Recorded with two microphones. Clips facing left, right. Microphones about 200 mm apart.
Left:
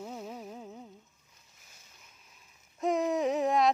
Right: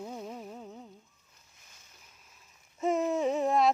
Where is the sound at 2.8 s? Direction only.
Centre (ahead or behind).